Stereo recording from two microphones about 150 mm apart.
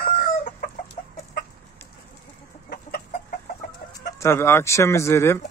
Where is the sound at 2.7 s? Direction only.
90° left.